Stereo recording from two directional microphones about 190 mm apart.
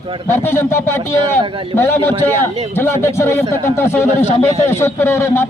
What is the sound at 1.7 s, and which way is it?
A man's voice, 10° left (ahead or behind).